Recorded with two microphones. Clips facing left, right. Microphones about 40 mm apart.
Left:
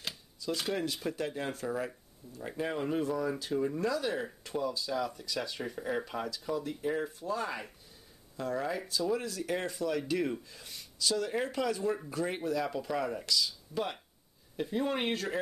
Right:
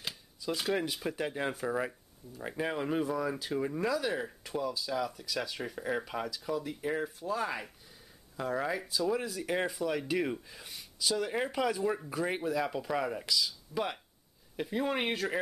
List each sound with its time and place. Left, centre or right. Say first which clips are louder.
0.0 s speech: even; centre
3.9 s speech: right 1 dB; centre